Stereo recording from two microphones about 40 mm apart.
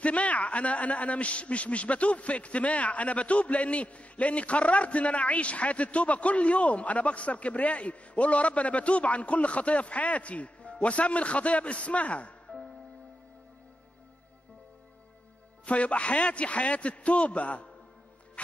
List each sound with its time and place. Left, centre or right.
0.0 s a man's voice: left
15.6 s a man's voice: left